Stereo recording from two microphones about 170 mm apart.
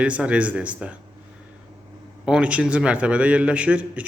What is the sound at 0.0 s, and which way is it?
Speech, 5° right (ahead or behind).